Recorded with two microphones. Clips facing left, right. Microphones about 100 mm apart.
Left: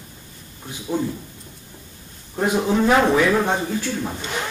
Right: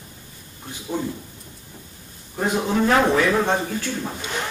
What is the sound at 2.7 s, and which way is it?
Speech, 10° left (ahead or behind).